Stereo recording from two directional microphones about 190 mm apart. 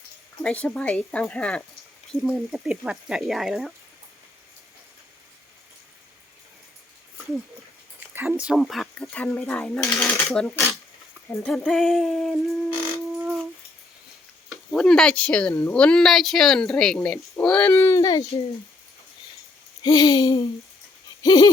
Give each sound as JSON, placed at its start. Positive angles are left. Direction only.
{"t": 0.4, "sound": "speech", "side_deg": 5}
{"t": 8.1, "sound": "speech", "side_deg": -10}
{"t": 14.7, "sound": "speech", "side_deg": 5}
{"t": 19.8, "sound": "a sound", "side_deg": 20}